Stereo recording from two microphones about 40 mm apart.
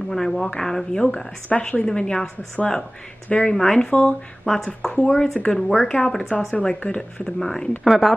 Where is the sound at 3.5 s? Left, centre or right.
Centre.